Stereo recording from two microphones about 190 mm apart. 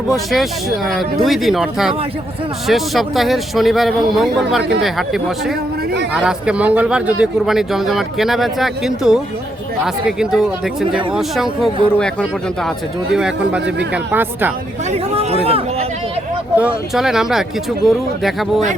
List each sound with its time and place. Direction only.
0.1 s a man's voice: centre (ahead or behind)
13.1 s a man's voice: 5° right (ahead or behind)
14.8 s a sound: 30° right (ahead or behind)
16.6 s a man's voice: 5° right (ahead or behind)